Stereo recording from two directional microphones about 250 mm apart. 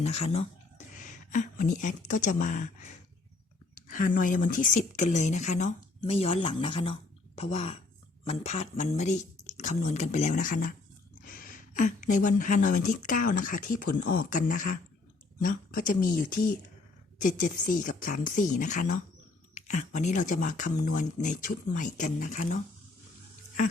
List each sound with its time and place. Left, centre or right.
0.0 s speech: left
3.8 s speech: left